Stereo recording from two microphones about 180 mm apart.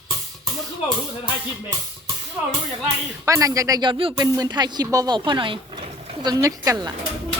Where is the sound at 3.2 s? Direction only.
20° right (ahead or behind).